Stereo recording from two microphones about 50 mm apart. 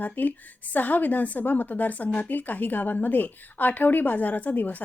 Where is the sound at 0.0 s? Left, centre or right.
Left.